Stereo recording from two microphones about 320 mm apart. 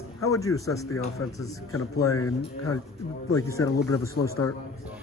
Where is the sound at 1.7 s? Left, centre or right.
Left.